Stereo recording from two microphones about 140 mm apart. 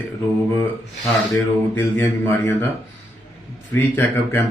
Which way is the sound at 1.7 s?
15° left (ahead or behind).